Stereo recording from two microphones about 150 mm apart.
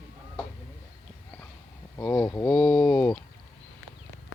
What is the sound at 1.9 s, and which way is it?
Speech, 15° left (ahead or behind).